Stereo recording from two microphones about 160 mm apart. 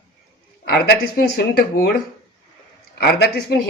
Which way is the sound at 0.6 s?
75° left (ahead or behind).